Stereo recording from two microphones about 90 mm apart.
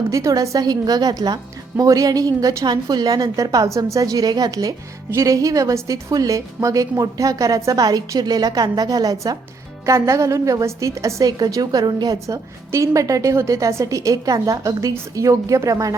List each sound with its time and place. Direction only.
0.1 s a woman's voice: 40° right (ahead or behind)
9.8 s a woman's voice: 35° right (ahead or behind)
12.7 s a woman's voice: 35° right (ahead or behind)